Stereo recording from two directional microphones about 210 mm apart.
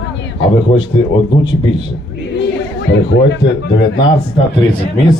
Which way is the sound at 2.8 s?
55° left (ahead or behind).